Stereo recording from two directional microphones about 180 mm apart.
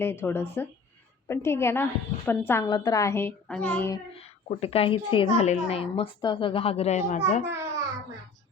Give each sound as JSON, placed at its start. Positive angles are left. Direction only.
{"t": 0.0, "sound": "a woman's voice", "side_deg": 15}
{"t": 4.4, "sound": "a woman's voice", "side_deg": 35}
{"t": 7.4, "sound": "a child's voice", "side_deg": -15}